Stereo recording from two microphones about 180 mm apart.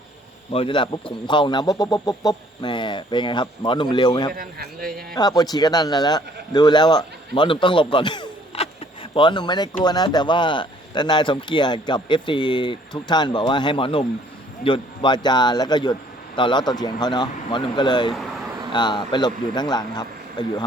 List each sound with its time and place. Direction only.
0.5 s speech: 30° left (ahead or behind)
4.4 s a man's voice: 55° right (ahead or behind)
5.1 s speech: 20° left (ahead or behind)